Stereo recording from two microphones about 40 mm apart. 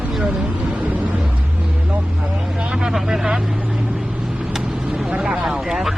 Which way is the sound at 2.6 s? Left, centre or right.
Right.